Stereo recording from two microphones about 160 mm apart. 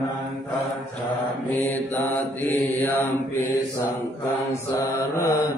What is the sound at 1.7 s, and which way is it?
Mantra, 10° left (ahead or behind).